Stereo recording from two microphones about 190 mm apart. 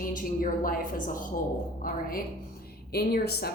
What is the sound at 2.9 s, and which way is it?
Speech, 55° left (ahead or behind).